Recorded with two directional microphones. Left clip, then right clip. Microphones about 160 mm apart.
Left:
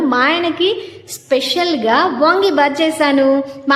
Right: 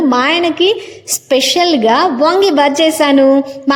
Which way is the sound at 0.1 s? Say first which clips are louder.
Right 2 dB; 35° right (ahead or behind).